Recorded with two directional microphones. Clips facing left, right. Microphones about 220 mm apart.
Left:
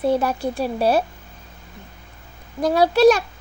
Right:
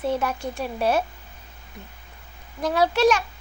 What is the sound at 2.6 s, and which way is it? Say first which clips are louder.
Speech: left 6 dB; 35° left (ahead or behind).